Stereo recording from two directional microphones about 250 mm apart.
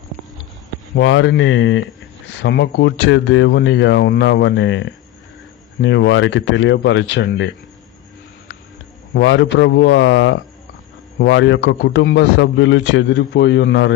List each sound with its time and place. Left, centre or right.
0.9 s a man's voice: left
9.1 s a man's voice: left